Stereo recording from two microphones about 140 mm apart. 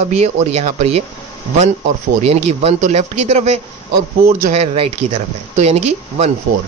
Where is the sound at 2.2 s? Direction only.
50° right (ahead or behind).